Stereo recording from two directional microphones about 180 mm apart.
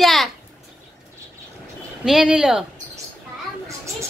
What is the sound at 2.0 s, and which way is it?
Speech, 5° right (ahead or behind).